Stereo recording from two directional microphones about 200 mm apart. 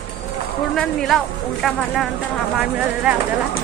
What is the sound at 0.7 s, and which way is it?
A woman's voice, centre (ahead or behind).